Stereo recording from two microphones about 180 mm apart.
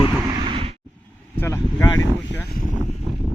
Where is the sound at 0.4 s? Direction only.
30° right (ahead or behind).